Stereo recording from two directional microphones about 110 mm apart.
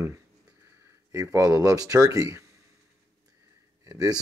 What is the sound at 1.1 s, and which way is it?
Speech, 30° right (ahead or behind).